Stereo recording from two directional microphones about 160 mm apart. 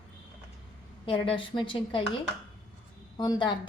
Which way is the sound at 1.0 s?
35° left (ahead or behind).